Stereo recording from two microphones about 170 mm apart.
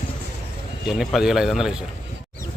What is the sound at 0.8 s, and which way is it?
Speech, centre (ahead or behind).